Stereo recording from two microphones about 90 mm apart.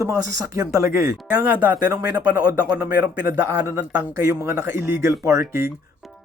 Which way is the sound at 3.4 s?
35° right (ahead or behind).